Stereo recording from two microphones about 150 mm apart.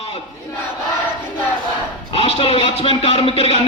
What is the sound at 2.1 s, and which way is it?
Speech, 40° left (ahead or behind).